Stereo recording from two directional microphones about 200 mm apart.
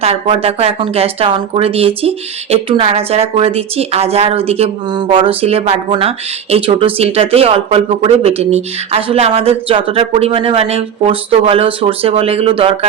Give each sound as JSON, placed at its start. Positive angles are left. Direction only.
{"t": 0.0, "sound": "speech", "side_deg": -30}